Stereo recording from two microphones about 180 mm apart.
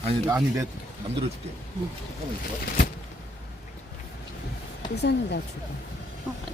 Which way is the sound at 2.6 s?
55° left (ahead or behind).